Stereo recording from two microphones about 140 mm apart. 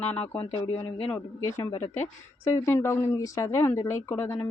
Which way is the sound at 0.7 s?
40° left (ahead or behind).